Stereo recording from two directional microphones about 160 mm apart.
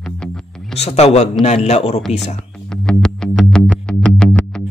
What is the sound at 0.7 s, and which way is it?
A man's voice, 40° left (ahead or behind).